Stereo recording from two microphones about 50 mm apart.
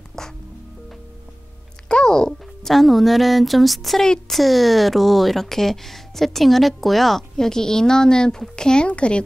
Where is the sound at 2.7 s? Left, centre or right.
Centre.